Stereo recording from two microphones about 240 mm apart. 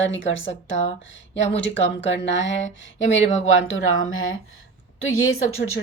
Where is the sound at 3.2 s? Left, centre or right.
Left.